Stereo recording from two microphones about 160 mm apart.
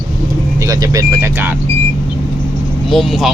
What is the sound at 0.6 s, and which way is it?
Speech, 20° right (ahead or behind).